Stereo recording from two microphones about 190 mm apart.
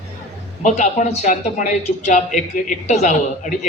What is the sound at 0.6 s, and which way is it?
A woman's voice, 40° left (ahead or behind).